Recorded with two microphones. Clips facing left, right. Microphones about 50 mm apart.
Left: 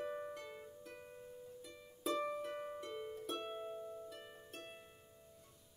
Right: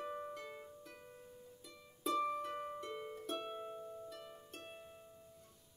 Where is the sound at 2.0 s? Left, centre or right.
Centre.